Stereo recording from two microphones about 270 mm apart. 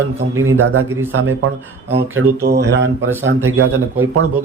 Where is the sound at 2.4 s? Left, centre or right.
Right.